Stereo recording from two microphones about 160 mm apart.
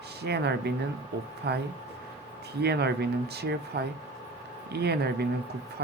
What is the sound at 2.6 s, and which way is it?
Speech, 90° right.